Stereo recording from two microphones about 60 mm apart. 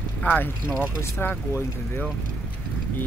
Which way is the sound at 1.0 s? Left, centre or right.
Left.